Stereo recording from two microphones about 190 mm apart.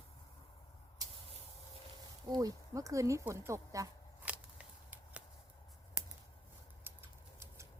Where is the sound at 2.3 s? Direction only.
20° right (ahead or behind).